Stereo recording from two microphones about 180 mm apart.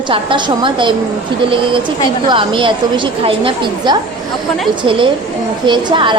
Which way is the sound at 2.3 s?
30° right (ahead or behind).